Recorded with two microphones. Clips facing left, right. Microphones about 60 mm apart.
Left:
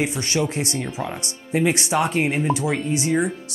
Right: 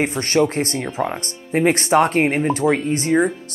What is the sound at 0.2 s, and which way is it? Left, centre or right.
Speech, right.